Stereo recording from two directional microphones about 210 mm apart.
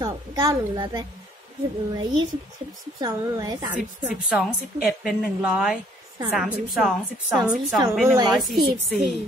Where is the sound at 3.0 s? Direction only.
15° right (ahead or behind).